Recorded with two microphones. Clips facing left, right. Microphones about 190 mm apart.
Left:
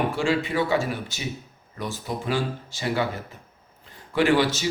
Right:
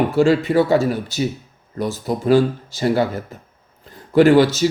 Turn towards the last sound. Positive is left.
turn(degrees=-40)  # may be behind; listen again after turning